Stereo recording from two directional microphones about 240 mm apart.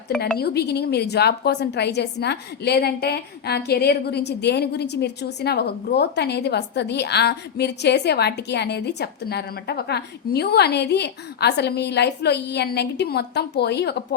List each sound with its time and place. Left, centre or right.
0.3 s a woman's voice: left